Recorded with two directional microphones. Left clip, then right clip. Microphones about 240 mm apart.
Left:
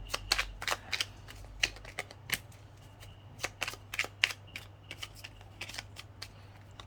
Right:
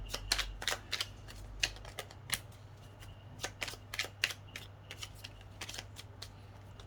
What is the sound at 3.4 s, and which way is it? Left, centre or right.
Shuffling cards, centre.